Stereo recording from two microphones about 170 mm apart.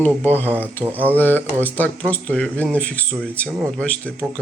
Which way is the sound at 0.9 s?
10° right (ahead or behind).